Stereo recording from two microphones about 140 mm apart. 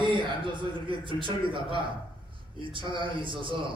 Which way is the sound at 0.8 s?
35° right (ahead or behind).